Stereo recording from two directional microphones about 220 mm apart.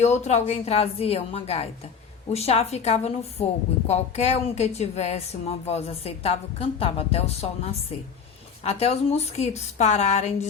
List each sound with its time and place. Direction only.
0.0 s a woman's voice: 30° left (ahead or behind)